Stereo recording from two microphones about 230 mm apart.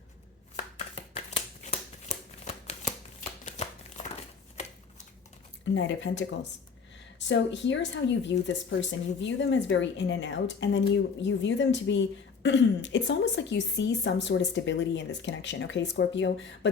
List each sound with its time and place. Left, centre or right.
0.5 s a sound: left
1.6 s shuffling cards: left
5.7 s speech: left
7.3 s speech: left